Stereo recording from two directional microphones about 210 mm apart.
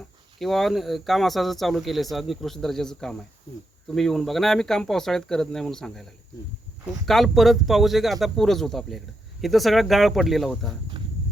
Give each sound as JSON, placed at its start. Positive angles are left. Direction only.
{"t": 0.3, "sound": "speech", "side_deg": 0}